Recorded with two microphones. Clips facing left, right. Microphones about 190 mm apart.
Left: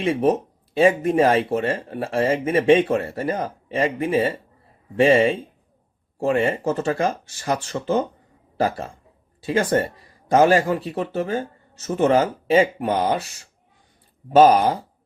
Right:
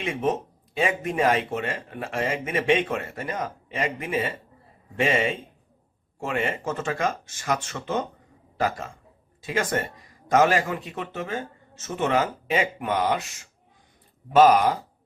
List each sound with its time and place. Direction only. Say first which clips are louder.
0.0 s a man's voice: left 6 dB; 35° left (ahead or behind)